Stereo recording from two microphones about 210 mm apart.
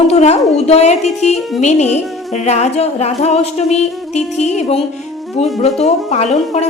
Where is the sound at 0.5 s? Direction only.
30° left (ahead or behind).